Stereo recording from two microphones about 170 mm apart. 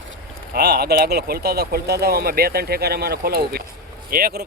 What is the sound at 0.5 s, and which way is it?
Speech, 70° right (ahead or behind).